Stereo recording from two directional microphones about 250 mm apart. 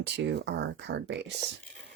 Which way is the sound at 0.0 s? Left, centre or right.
Right.